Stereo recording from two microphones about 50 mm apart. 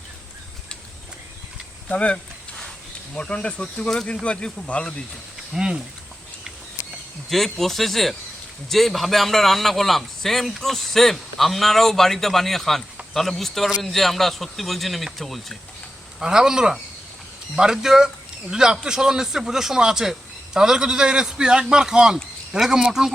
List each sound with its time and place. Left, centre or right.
1.9 s a sound: left
3.2 s speech: left
5.5 s speech: centre
7.3 s a man's voice: centre
16.2 s speech: centre